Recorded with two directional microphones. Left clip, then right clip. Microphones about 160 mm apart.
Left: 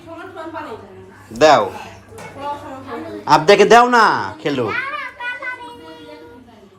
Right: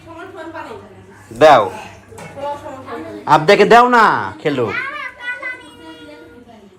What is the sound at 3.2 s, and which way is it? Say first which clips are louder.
Speech: even; 15° left (ahead or behind).